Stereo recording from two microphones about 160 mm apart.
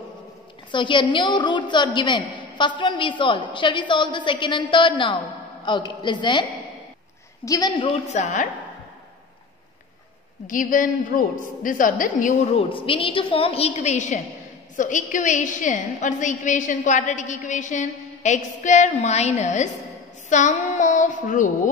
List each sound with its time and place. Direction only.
0.7 s a woman's voice: 30° left (ahead or behind)
7.4 s a woman's voice: 25° left (ahead or behind)
8.1 s a woman's voice: 50° left (ahead or behind)
10.4 s a woman's voice: 55° left (ahead or behind)
12.5 s a woman's voice: 35° left (ahead or behind)
20.2 s child singing: 50° left (ahead or behind)